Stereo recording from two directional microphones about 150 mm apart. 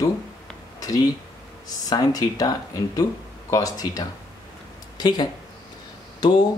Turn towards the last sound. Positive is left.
turn(degrees=30)  # may be behind; listen again after turning